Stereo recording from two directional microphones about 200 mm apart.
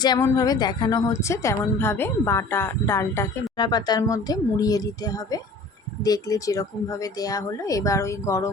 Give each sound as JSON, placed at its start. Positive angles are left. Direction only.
{"t": 0.0, "sound": "a woman's voice", "side_deg": 20}